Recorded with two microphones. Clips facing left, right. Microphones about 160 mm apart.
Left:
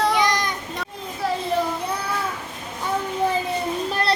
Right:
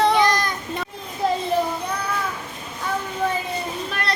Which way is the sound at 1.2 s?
20° right (ahead or behind).